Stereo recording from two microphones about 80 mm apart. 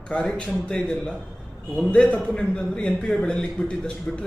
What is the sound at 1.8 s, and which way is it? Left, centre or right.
A man's voice, centre.